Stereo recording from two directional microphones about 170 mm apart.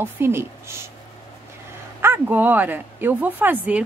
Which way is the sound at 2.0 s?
10° right (ahead or behind).